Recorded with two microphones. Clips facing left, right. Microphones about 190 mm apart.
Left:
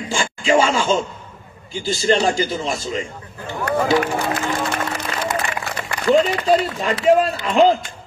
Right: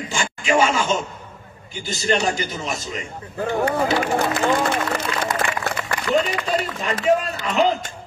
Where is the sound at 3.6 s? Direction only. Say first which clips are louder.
Left 5 dB; 55° left (ahead or behind).